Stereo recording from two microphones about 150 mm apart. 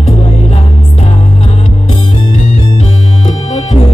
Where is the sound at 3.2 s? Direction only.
50° left (ahead or behind).